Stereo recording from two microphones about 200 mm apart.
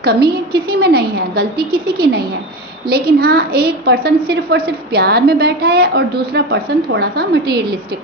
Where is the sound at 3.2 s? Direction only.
50° right (ahead or behind).